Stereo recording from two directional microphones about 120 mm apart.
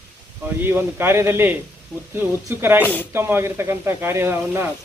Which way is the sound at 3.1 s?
20° right (ahead or behind).